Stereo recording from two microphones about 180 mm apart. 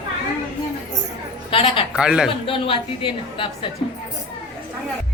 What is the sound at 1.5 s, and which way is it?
Speech, 30° left (ahead or behind).